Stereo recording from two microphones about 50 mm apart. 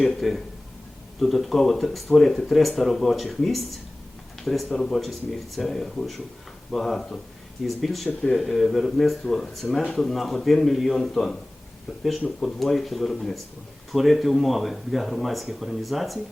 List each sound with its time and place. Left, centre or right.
0.0 s a man's voice: centre
12.4 s speech: centre